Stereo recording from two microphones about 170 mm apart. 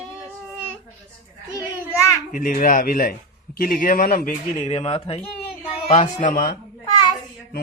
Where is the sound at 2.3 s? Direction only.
55° left (ahead or behind).